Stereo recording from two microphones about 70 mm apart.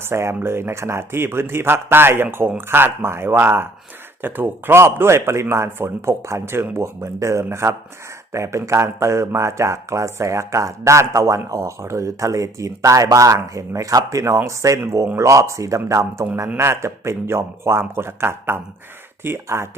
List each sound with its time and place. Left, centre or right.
0.0 s speech: right
16.6 s speech: right